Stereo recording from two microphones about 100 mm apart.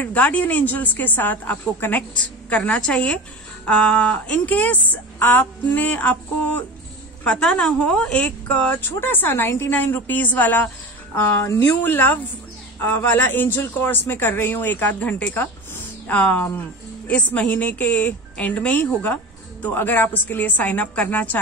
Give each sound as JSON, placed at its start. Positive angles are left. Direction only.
{"t": 0.1, "sound": "a woman's voice", "side_deg": 15}